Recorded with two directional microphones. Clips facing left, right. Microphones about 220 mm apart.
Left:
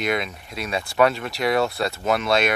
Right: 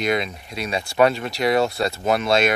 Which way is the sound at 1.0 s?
25° right (ahead or behind).